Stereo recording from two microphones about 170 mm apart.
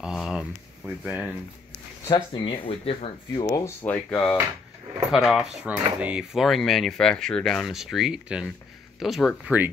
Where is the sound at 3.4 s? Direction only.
20° left (ahead or behind).